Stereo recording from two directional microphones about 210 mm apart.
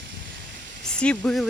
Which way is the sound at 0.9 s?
5° left (ahead or behind).